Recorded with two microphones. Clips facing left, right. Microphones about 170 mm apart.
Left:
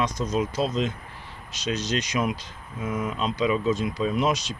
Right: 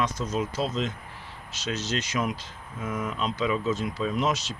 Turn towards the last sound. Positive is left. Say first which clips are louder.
# left 3 dB
turn(degrees=15)  # may be behind; listen again after turning